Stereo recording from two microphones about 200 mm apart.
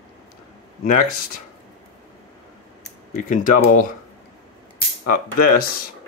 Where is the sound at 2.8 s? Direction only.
40° left (ahead or behind).